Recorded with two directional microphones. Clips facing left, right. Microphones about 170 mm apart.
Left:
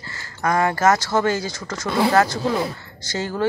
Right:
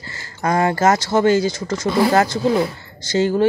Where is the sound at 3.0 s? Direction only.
25° right (ahead or behind).